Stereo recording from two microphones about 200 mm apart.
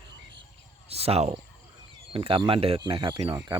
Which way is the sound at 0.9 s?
30° right (ahead or behind).